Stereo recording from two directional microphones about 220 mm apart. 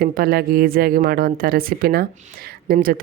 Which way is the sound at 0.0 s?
45° right (ahead or behind).